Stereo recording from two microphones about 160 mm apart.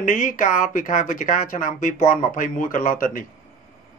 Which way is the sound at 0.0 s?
50° left (ahead or behind).